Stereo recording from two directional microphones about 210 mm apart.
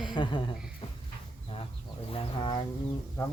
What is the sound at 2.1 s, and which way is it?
Speech, 25° left (ahead or behind).